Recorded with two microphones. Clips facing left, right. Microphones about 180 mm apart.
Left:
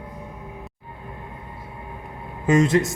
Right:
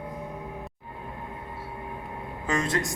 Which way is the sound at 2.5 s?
20° left (ahead or behind).